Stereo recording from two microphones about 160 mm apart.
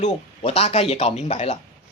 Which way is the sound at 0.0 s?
45° left (ahead or behind).